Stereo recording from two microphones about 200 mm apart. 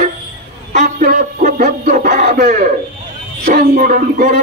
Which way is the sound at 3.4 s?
45° right (ahead or behind).